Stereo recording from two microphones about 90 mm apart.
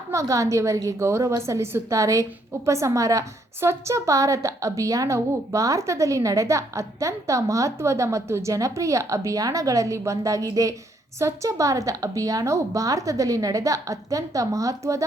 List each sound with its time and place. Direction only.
0.1 s a woman's voice: 35° right (ahead or behind)